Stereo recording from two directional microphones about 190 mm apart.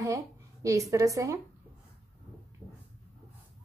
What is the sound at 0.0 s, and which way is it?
Speech, 15° right (ahead or behind).